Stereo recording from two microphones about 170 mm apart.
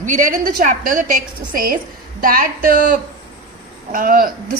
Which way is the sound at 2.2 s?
55° right (ahead or behind).